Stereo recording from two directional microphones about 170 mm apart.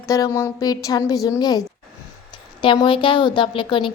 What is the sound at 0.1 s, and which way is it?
A woman's voice, 20° left (ahead or behind).